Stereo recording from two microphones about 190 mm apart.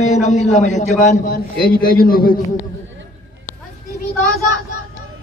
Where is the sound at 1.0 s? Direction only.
50° left (ahead or behind).